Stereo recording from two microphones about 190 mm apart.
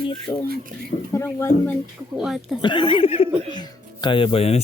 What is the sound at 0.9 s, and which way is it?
Speech, 40° left (ahead or behind).